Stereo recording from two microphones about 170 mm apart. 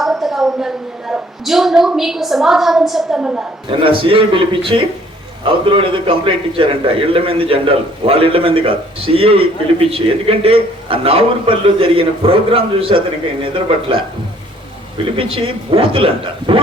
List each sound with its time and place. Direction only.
0.0 s a woman's voice: centre (ahead or behind)
3.7 s a man's voice: 30° right (ahead or behind)
15.1 s a man's voice: 35° right (ahead or behind)